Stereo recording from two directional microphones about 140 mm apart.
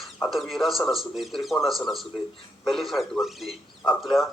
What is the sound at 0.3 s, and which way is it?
A man's voice, centre (ahead or behind).